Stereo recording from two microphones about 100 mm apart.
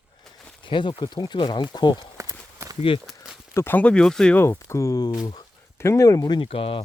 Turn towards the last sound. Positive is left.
turn(degrees=65)  # may be behind; listen again after turning